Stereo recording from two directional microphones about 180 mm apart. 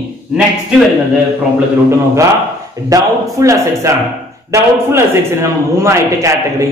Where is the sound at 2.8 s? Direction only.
20° right (ahead or behind).